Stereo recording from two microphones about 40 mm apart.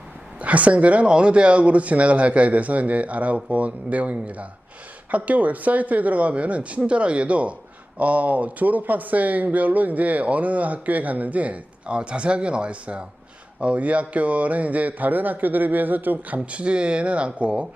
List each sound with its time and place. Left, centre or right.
0.3 s speech: right
16.5 s speech: right